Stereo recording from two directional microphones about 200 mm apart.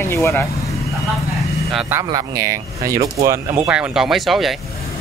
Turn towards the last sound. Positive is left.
turn(degrees=0)  # may be behind; listen again after turning